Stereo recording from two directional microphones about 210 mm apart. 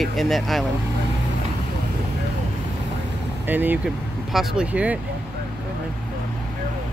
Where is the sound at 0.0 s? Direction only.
Centre (ahead or behind).